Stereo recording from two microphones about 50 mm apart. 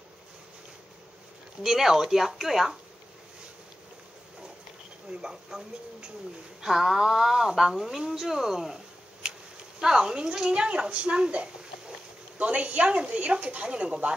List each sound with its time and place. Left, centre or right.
1.6 s speech: centre
5.1 s speech: centre
9.8 s a woman's voice: centre